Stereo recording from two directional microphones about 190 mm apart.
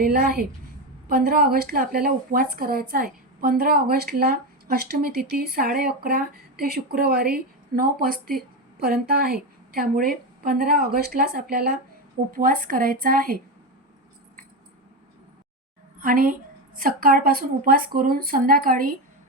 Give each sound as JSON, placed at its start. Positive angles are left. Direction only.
{"t": 0.0, "sound": "a woman's voice", "side_deg": -55}
{"t": 16.0, "sound": "a woman's voice", "side_deg": -50}